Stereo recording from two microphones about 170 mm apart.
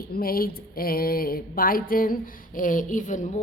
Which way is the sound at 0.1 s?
60° left (ahead or behind).